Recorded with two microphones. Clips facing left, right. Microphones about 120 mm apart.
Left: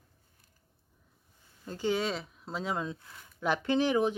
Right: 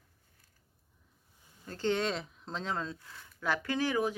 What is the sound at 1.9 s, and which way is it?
A woman's voice, 5° left (ahead or behind).